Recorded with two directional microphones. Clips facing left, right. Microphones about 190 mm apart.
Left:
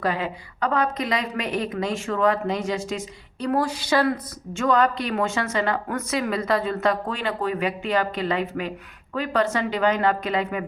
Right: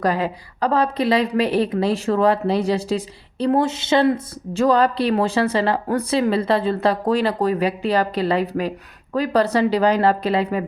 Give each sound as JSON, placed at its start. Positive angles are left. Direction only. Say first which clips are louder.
{"t": 0.0, "sound": "a woman's voice", "louder": "right 5 dB", "side_deg": -40}